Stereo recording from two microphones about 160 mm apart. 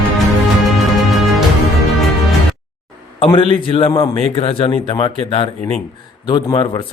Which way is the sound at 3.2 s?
35° left (ahead or behind).